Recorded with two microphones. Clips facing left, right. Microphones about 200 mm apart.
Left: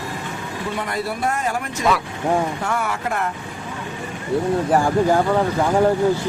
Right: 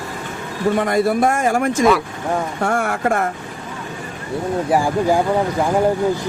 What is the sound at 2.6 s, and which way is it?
Speech, 50° right (ahead or behind).